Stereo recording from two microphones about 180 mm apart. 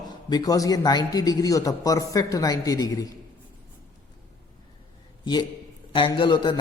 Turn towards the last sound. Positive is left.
turn(degrees=25)  # may be behind; listen again after turning